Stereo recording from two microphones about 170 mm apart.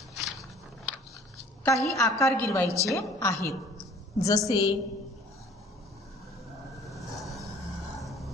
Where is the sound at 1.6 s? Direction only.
15° left (ahead or behind).